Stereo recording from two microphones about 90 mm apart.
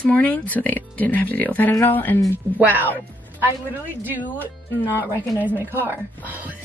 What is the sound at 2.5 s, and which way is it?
Speech, 20° right (ahead or behind).